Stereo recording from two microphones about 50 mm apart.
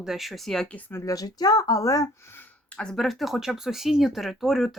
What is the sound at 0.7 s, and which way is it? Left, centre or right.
Speech, left.